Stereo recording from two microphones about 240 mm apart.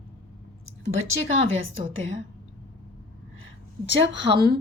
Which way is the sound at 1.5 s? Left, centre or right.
Right.